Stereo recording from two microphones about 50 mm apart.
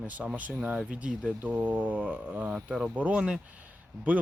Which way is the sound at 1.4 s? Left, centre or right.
Right.